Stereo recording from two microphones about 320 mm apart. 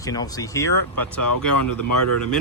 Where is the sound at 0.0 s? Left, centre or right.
Centre.